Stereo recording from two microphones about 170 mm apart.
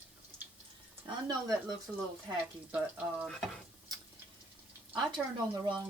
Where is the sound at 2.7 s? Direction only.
10° right (ahead or behind).